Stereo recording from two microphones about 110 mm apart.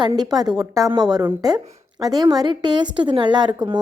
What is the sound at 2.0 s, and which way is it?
A woman's voice, 35° right (ahead or behind).